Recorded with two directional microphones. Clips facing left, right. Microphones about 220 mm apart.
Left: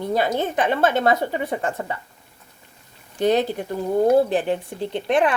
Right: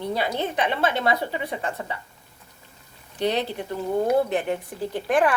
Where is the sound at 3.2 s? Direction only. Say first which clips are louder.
Left 5 dB; 45° left (ahead or behind).